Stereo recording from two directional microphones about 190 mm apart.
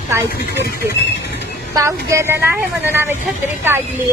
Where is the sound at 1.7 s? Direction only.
15° right (ahead or behind).